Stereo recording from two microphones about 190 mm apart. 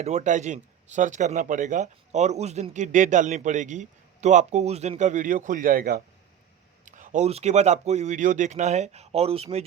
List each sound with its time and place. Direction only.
0.0 s speech: 35° right (ahead or behind)